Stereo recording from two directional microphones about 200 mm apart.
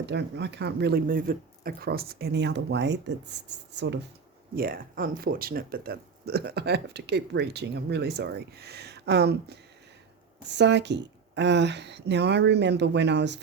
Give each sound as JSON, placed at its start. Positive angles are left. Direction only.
{"t": 0.0, "sound": "speech", "side_deg": -60}
{"t": 4.5, "sound": "speech", "side_deg": -45}